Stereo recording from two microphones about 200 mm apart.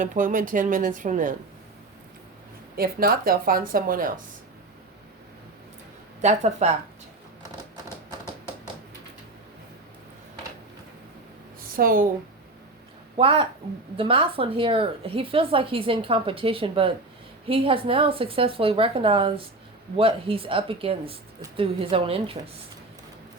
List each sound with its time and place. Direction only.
0.0 s a woman's voice: 40° right (ahead or behind)
2.7 s a woman's voice: 50° right (ahead or behind)
6.2 s a woman's voice: 35° right (ahead or behind)
11.8 s a woman's voice: 45° right (ahead or behind)
13.1 s a woman's voice: 25° right (ahead or behind)